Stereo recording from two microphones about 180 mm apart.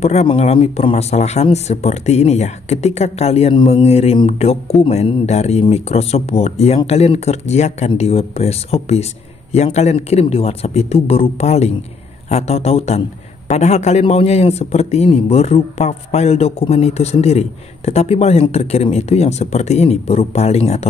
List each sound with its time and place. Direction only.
0.0 s a man's voice: 35° left (ahead or behind)